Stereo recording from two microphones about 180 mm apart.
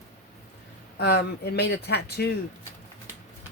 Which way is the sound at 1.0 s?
65° left (ahead or behind).